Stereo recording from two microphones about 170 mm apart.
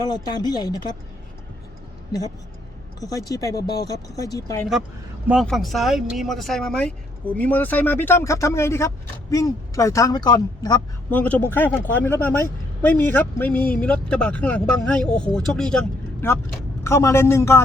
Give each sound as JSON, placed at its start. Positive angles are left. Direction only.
{"t": 0.1, "sound": "speech", "side_deg": 25}
{"t": 3.0, "sound": "speech", "side_deg": 20}
{"t": 5.3, "sound": "a man's voice", "side_deg": 0}
{"t": 11.1, "sound": "a man's voice", "side_deg": 10}